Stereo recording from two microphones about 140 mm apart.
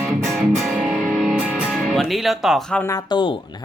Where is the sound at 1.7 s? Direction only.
5° left (ahead or behind).